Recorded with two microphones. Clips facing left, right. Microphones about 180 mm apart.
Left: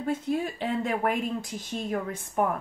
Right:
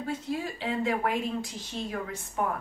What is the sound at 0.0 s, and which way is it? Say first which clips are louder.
Speech: left 4 dB; 50° left (ahead or behind).